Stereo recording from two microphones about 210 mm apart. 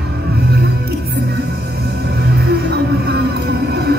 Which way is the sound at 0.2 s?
50° right (ahead or behind).